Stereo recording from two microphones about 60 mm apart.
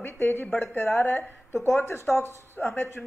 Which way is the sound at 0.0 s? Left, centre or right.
Left.